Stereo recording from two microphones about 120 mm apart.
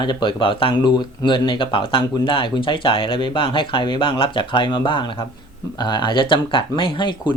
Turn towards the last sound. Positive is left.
turn(degrees=45)  # may be behind; listen again after turning